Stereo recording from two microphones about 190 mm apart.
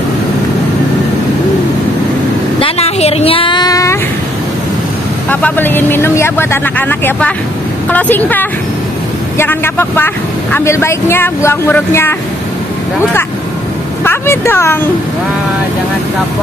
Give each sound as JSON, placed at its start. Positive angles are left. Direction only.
{"t": 2.6, "sound": "a sound", "side_deg": 30}
{"t": 5.3, "sound": "speech", "side_deg": 10}
{"t": 14.0, "sound": "speech", "side_deg": 15}